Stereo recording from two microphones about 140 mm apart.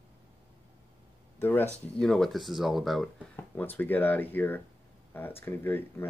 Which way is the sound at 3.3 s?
15° left (ahead or behind).